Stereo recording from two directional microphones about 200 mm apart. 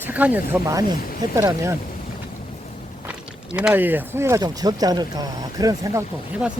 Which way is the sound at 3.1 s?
5° right (ahead or behind).